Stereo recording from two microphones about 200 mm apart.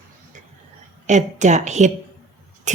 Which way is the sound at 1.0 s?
35° right (ahead or behind).